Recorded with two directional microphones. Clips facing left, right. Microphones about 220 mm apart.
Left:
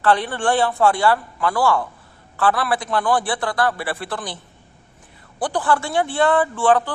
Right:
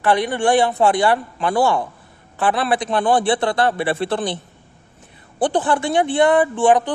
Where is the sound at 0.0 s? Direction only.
15° right (ahead or behind).